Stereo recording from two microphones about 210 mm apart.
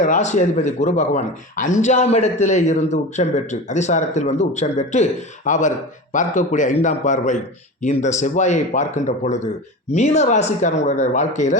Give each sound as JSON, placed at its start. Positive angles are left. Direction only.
{"t": 0.0, "sound": "speech", "side_deg": 35}